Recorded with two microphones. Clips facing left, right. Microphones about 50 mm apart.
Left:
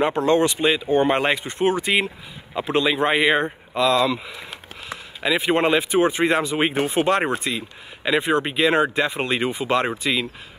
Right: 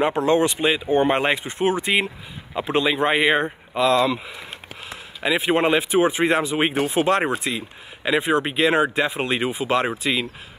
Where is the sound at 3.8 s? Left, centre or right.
Right.